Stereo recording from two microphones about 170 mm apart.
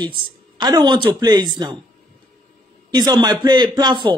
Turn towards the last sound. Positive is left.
turn(degrees=-25)  # may be behind; listen again after turning